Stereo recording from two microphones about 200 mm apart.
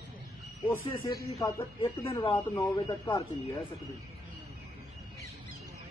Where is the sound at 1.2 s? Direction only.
15° left (ahead or behind).